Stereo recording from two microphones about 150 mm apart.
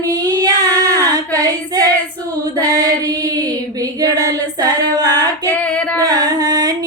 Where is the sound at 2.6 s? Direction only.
25° right (ahead or behind).